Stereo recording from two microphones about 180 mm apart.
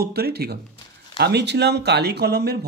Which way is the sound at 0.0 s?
60° right (ahead or behind).